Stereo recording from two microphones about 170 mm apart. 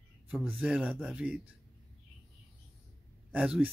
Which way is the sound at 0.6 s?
5° right (ahead or behind).